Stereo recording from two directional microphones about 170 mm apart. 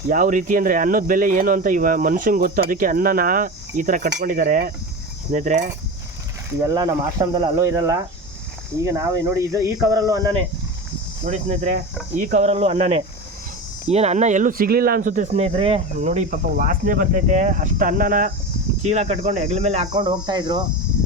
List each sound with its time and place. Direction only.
0.1 s speech: 50° right (ahead or behind)
6.7 s speech: 25° right (ahead or behind)
11.2 s speech: 40° right (ahead or behind)
12.1 s cricket: 50° right (ahead or behind)
13.8 s speech: 40° right (ahead or behind)
18.9 s cricket: 40° right (ahead or behind)
19.9 s speech: 25° right (ahead or behind)